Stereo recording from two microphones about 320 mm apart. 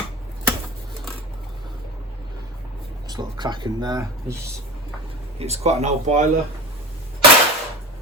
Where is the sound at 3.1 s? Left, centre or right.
Centre.